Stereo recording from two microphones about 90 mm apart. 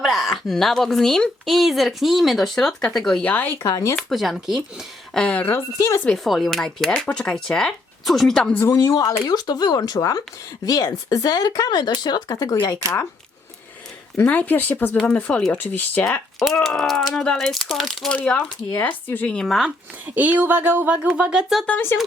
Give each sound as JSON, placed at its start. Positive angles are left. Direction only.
{"t": 0.0, "sound": "a woman's voice", "side_deg": 0}
{"t": 3.6, "sound": "speech", "side_deg": 35}
{"t": 3.9, "sound": "a woman's voice", "side_deg": 0}
{"t": 5.1, "sound": "speech", "side_deg": 15}
{"t": 5.7, "sound": "speech", "side_deg": 35}
{"t": 6.1, "sound": "a woman's voice", "side_deg": 0}
{"t": 8.6, "sound": "speech", "side_deg": 40}
{"t": 14.3, "sound": "speech", "side_deg": 20}
{"t": 16.4, "sound": "a woman's voice", "side_deg": 0}
{"t": 19.3, "sound": "speech", "side_deg": 5}
{"t": 20.1, "sound": "speech", "side_deg": -20}
{"t": 21.7, "sound": "speech", "side_deg": 25}